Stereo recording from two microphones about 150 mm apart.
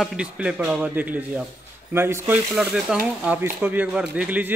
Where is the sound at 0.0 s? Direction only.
5° right (ahead or behind).